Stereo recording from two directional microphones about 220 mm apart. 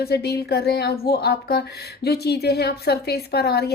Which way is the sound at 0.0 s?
45° left (ahead or behind).